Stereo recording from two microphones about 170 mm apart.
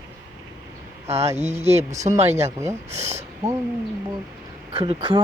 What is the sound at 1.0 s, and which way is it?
A woman's voice, 40° right (ahead or behind).